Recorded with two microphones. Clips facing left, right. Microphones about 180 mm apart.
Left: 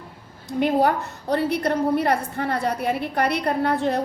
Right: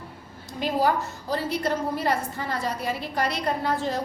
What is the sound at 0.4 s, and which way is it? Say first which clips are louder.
A woman's voice: left 4 dB; 60° left (ahead or behind).